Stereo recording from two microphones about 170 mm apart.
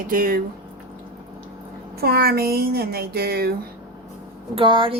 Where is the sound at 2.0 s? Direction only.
65° right (ahead or behind).